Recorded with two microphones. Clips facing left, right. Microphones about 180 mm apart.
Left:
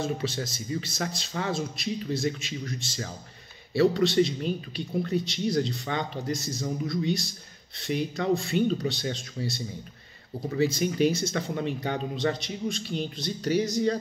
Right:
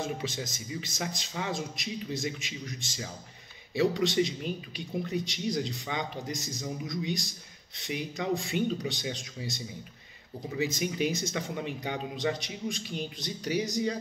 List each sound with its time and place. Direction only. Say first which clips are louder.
0.0 s speech: left 4 dB; 15° right (ahead or behind)